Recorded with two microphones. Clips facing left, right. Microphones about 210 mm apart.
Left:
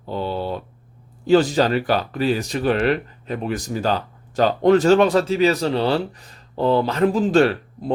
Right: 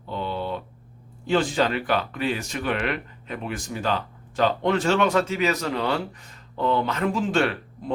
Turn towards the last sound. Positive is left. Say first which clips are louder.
# left 6 dB
turn(degrees=35)  # may be behind; listen again after turning